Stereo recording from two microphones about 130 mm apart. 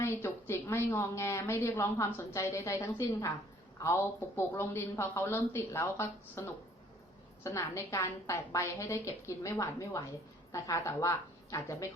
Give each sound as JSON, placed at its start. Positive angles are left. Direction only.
{"t": 0.0, "sound": "a woman's voice", "side_deg": 20}
{"t": 4.4, "sound": "a woman's voice", "side_deg": 20}